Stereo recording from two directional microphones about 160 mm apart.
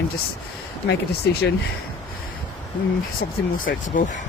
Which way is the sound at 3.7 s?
70° left (ahead or behind).